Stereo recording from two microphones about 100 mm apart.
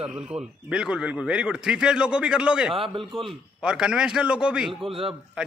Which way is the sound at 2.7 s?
60° right (ahead or behind).